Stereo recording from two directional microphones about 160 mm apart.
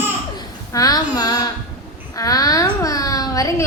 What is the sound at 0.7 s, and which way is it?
A child's voice, 20° left (ahead or behind).